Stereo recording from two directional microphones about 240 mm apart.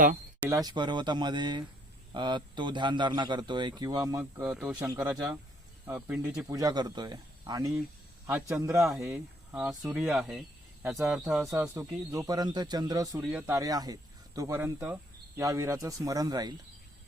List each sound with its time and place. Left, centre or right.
0.4 s a man's voice: centre